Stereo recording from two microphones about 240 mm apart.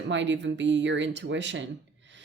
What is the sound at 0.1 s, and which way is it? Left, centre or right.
Speech, right.